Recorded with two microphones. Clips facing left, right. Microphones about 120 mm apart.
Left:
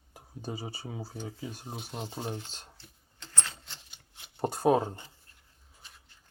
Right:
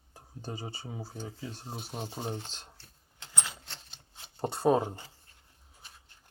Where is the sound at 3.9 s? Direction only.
30° right (ahead or behind).